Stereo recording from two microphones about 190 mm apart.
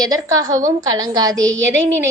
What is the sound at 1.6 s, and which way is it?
Speech, 80° right.